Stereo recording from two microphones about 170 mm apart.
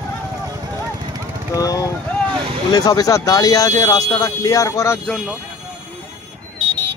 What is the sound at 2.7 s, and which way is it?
Speech, 20° left (ahead or behind).